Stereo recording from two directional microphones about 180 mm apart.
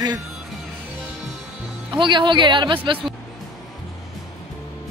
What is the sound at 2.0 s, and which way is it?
Speech, 25° right (ahead or behind).